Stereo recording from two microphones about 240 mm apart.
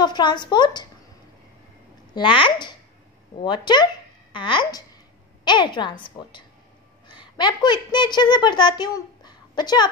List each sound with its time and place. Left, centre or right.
0.0 s a woman's voice: centre
2.1 s a woman's voice: centre